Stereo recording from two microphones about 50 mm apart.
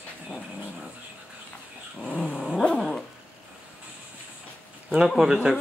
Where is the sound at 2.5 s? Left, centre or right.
Centre.